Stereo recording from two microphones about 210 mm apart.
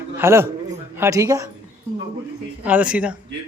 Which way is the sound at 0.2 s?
10° right (ahead or behind).